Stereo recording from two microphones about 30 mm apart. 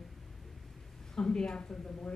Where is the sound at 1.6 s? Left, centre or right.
Left.